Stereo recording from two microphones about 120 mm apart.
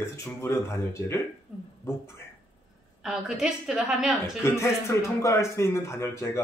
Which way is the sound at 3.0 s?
5° right (ahead or behind).